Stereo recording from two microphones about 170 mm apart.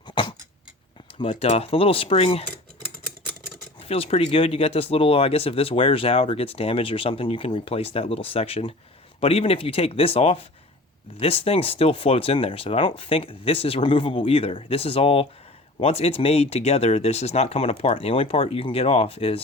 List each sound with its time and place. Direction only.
1.2 s speech: 35° left (ahead or behind)
3.8 s speech: 35° left (ahead or behind)